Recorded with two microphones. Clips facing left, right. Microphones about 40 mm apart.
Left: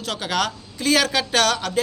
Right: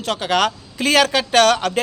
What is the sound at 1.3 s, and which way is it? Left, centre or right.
Speech, right.